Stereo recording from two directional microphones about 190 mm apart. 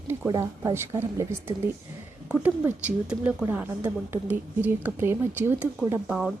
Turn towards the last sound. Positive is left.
turn(degrees=-5)  # may be behind; listen again after turning